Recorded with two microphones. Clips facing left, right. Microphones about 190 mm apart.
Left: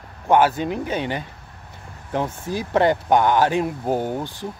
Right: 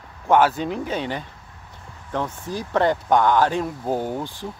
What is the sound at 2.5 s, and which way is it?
Speech, 5° left (ahead or behind).